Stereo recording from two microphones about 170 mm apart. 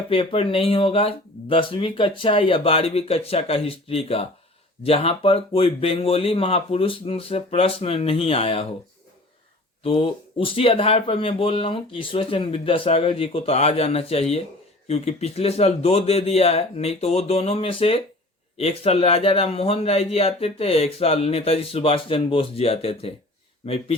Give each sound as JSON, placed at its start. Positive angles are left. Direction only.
{"t": 0.1, "sound": "speech", "side_deg": 35}
{"t": 9.8, "sound": "speech", "side_deg": 35}